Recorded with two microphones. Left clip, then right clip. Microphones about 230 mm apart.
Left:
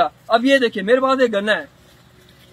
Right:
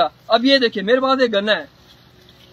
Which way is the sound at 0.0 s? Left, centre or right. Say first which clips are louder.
Even; centre.